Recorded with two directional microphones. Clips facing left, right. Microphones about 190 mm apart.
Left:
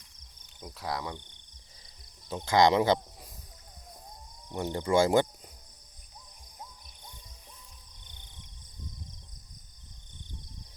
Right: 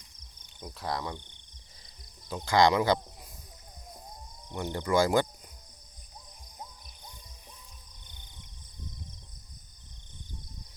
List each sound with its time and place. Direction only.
0.6 s speech: 5° left (ahead or behind)
2.3 s speech: 25° left (ahead or behind)
4.5 s speech: 30° left (ahead or behind)